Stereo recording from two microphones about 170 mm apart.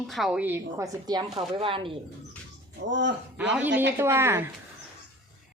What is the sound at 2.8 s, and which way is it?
Speech, 90° right.